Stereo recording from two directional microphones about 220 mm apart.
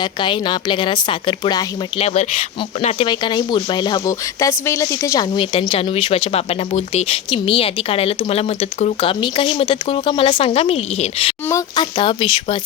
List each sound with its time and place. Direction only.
0.0 s speech: 20° left (ahead or behind)
11.4 s speech: 15° left (ahead or behind)